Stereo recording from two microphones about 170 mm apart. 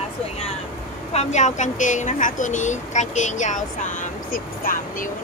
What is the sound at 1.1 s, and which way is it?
Speech, 40° left (ahead or behind).